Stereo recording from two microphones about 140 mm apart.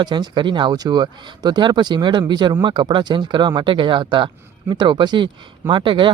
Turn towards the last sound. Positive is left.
turn(degrees=-35)  # may be behind; listen again after turning